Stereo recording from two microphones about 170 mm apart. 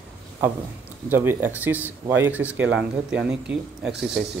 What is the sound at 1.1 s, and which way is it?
Speech, 10° right (ahead or behind).